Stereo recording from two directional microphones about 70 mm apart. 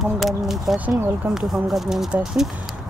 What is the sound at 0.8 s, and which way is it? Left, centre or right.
Speech, right.